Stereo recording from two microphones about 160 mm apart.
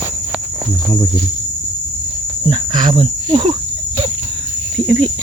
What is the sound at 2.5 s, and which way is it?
Speech, 30° right (ahead or behind).